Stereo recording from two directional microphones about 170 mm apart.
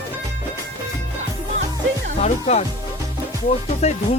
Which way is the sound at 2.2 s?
40° left (ahead or behind).